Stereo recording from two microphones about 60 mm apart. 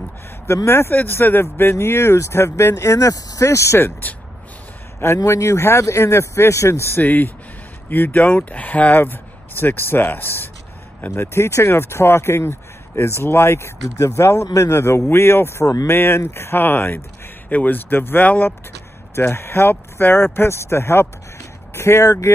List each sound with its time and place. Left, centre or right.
0.7 s speech: left
3.4 s speech: left
5.0 s speech: left
7.0 s speech: left
11.1 s speech: left
13.8 s speech: left
15.0 s speech: left
15.6 s speech: left
15.9 s speech: left
18.2 s speech: left
19.3 s speech: left